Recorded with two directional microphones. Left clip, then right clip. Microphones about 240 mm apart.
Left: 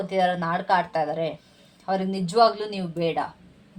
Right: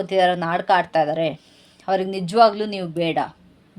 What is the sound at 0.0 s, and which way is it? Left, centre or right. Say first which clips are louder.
A woman's voice: right 5 dB; right.